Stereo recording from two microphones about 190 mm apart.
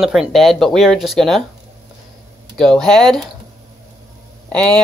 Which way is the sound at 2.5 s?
5° left (ahead or behind).